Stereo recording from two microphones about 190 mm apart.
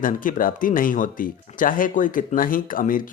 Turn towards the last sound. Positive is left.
turn(degrees=45)  # may be behind; listen again after turning